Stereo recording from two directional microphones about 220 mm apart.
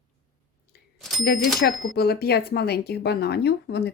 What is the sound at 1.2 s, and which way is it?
Speech, 50° left (ahead or behind).